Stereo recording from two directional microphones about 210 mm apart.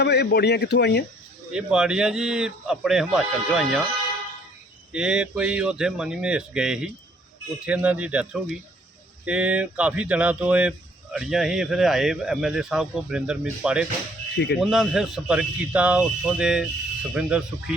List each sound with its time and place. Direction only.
0.0 s a man's voice: 50° left (ahead or behind)
1.5 s speech: 5° right (ahead or behind)
4.9 s speech: 5° right (ahead or behind)
14.3 s a man's voice: 55° left (ahead or behind)
14.6 s speech: centre (ahead or behind)